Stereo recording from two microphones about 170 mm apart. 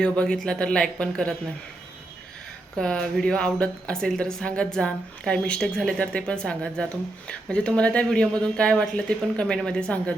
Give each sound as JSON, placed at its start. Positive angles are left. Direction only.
{"t": 0.0, "sound": "speech", "side_deg": 5}
{"t": 2.7, "sound": "speech", "side_deg": 5}